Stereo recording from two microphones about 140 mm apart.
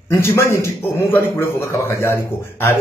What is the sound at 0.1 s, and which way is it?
A man's voice, 20° left (ahead or behind).